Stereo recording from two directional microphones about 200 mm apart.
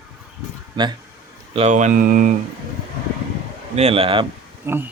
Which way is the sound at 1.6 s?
35° right (ahead or behind).